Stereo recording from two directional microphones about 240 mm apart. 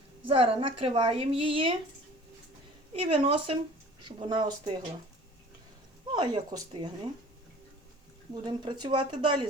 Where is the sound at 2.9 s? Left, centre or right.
Right.